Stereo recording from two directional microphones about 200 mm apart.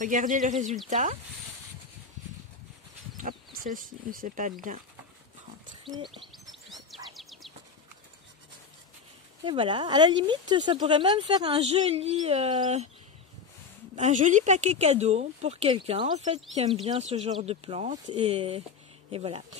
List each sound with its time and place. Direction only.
0.0 s speech: 40° right (ahead or behind)
3.2 s speech: 40° right (ahead or behind)
6.3 s bird: centre (ahead or behind)
9.4 s speech: 25° right (ahead or behind)
13.9 s speech: 40° right (ahead or behind)